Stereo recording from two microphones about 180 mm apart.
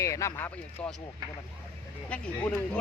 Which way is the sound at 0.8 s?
25° left (ahead or behind).